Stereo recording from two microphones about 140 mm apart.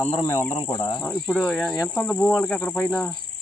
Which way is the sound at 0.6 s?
40° left (ahead or behind).